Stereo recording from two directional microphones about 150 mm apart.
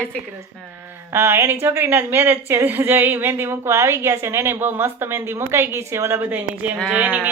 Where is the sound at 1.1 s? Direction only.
15° right (ahead or behind).